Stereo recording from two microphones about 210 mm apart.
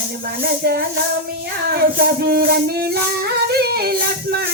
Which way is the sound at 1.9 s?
50° right (ahead or behind).